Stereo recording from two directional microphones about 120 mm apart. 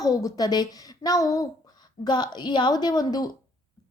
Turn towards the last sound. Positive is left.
turn(degrees=35)  # may be behind; listen again after turning